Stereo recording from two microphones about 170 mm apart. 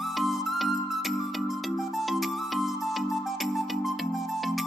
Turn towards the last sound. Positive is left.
turn(degrees=0)  # may be behind; listen again after turning